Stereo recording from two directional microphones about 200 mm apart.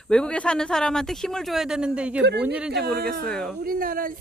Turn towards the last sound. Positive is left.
turn(degrees=-45)  # may be behind; listen again after turning